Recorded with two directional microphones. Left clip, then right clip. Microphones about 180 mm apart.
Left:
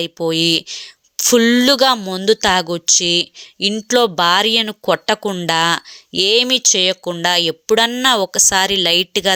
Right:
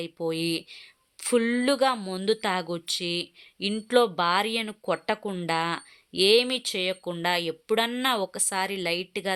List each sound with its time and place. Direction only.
0.0 s speech: 35° left (ahead or behind)